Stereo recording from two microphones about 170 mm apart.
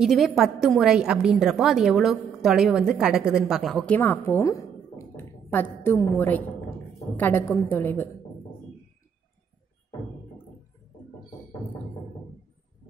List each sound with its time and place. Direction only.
0.0 s a woman's voice: centre (ahead or behind)